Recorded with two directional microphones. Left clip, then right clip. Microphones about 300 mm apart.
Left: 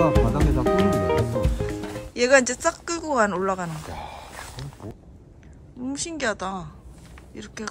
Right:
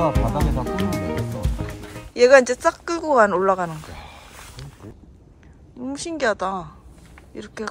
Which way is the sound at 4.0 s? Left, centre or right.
Left.